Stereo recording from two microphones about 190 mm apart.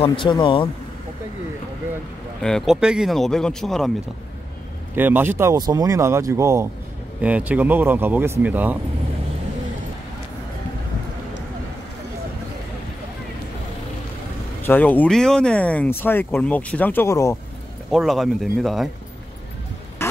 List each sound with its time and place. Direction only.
0.0 s speech: 25° left (ahead or behind)
2.4 s speech: centre (ahead or behind)
4.9 s speech: 10° right (ahead or behind)
14.6 s speech: 10° left (ahead or behind)
17.9 s speech: centre (ahead or behind)
20.0 s a sound: 15° left (ahead or behind)